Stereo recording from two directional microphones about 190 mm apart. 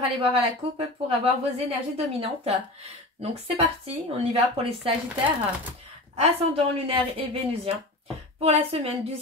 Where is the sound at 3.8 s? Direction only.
30° right (ahead or behind).